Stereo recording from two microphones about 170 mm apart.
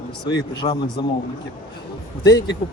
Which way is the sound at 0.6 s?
40° left (ahead or behind).